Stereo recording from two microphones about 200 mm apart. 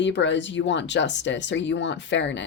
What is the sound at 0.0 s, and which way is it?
A woman's voice, 65° left (ahead or behind).